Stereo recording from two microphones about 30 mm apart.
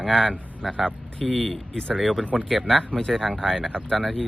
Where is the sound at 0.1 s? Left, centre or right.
Left.